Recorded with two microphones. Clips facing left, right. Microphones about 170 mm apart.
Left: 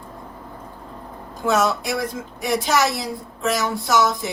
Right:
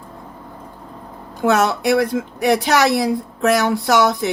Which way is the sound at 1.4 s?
65° right (ahead or behind).